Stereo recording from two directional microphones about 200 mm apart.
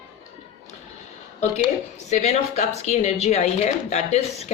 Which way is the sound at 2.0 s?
35° left (ahead or behind).